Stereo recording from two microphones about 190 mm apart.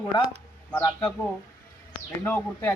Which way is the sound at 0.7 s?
10° left (ahead or behind).